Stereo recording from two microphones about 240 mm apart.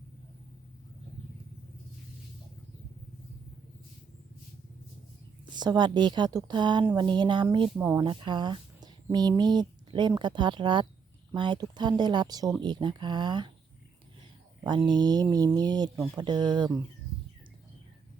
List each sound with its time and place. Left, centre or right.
5.5 s speech: centre
7.8 s speech: centre
14.7 s speech: centre